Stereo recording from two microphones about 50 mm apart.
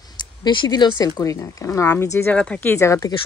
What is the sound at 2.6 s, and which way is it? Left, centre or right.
Speech, left.